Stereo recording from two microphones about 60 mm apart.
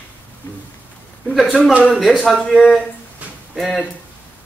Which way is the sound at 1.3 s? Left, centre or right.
Centre.